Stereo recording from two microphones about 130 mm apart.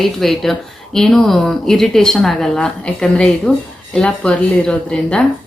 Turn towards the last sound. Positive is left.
turn(degrees=5)  # may be behind; listen again after turning